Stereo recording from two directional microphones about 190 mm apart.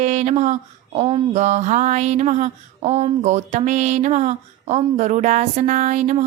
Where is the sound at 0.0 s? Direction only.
35° right (ahead or behind).